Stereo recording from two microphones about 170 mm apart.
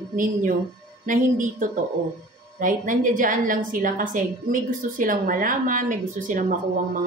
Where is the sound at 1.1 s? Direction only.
50° right (ahead or behind).